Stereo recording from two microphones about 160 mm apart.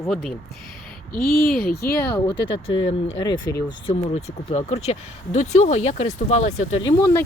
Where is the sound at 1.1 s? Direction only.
65° left (ahead or behind).